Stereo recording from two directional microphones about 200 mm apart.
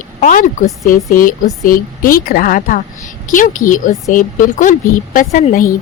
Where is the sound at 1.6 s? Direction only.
45° left (ahead or behind).